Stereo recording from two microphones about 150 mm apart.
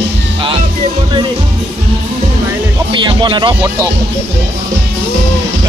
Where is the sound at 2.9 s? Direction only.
30° right (ahead or behind).